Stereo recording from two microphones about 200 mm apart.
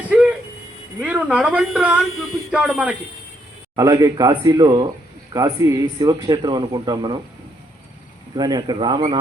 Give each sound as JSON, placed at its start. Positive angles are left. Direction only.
{"t": 1.0, "sound": "a man's voice", "side_deg": -5}
{"t": 2.1, "sound": "a sound", "side_deg": 90}
{"t": 2.5, "sound": "speech", "side_deg": -5}
{"t": 3.8, "sound": "a man's voice", "side_deg": -15}
{"t": 8.4, "sound": "speech", "side_deg": -20}